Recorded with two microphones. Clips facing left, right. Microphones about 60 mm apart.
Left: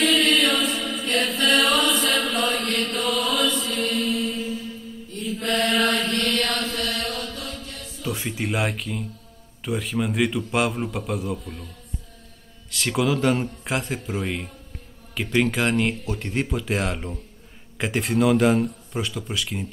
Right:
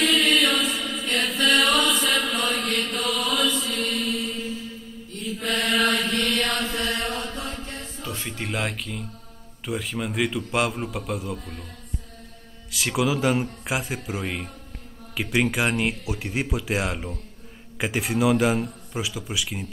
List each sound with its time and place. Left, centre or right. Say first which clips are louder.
0.0 s chant: left 1 dB; centre
6.7 s mantra: right 1 dB; centre
8.1 s a man's voice: left 4 dB; centre
12.7 s a man's voice: left 1 dB; centre